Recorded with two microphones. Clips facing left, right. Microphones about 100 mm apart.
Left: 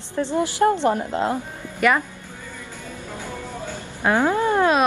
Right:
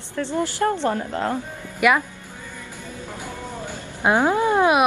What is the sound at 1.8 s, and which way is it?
Speech, 10° right (ahead or behind).